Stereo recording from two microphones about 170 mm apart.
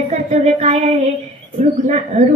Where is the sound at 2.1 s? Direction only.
35° right (ahead or behind).